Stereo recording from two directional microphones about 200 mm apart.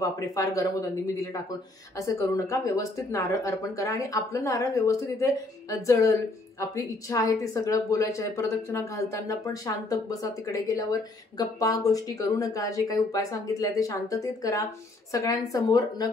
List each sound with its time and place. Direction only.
0.0 s speech: 15° left (ahead or behind)